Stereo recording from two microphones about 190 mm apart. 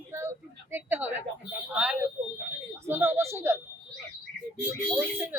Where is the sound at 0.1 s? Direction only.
10° right (ahead or behind).